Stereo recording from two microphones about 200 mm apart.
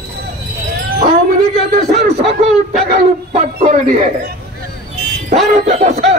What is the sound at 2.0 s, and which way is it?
Speech, 35° right (ahead or behind).